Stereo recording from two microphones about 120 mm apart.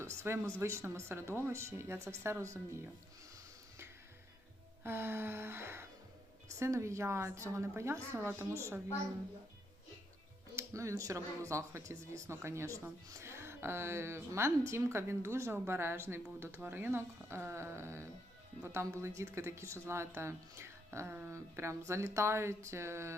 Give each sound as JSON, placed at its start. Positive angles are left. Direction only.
{"t": 0.0, "sound": "speech", "side_deg": -25}
{"t": 4.8, "sound": "speech", "side_deg": -20}
{"t": 10.5, "sound": "speech", "side_deg": -25}